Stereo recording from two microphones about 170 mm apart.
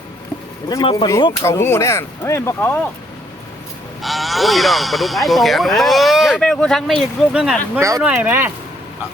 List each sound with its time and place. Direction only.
0.7 s speech: 30° left (ahead or behind)
1.0 s speech: 20° left (ahead or behind)
4.0 s speech: centre (ahead or behind)
7.8 s speech: 20° right (ahead or behind)